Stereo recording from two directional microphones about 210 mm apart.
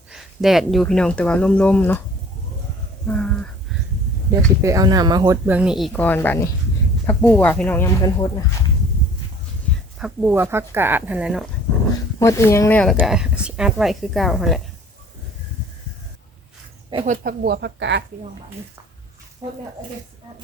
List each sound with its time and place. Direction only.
0.1 s speech: centre (ahead or behind)
3.1 s a sound: 5° left (ahead or behind)
4.6 s speech: 15° right (ahead or behind); by 8.3 s 15° left (ahead or behind)
9.7 s a sound: 5° left (ahead or behind)
10.0 s speech: 5° right (ahead or behind)
12.2 s speech: 15° left (ahead or behind)
16.9 s speech: 25° right (ahead or behind)
17.2 s speech: 50° right (ahead or behind)